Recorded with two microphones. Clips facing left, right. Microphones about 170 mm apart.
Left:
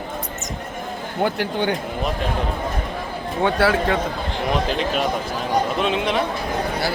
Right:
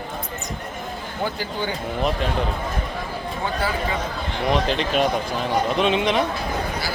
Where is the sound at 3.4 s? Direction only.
75° left (ahead or behind).